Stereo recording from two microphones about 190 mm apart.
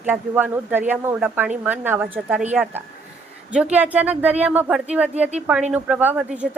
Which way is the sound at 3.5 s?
5° right (ahead or behind).